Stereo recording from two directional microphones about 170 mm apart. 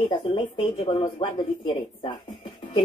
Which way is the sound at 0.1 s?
30° left (ahead or behind).